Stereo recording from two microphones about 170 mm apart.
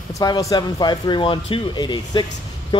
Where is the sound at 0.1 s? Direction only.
20° left (ahead or behind).